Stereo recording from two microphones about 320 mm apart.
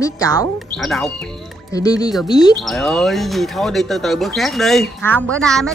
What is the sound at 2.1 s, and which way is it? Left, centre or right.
Speech, centre.